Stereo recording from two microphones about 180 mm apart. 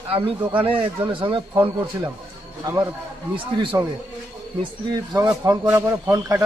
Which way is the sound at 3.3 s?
25° right (ahead or behind).